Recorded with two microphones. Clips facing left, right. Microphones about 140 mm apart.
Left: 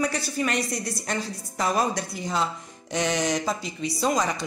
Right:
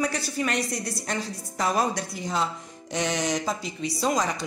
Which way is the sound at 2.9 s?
Centre (ahead or behind).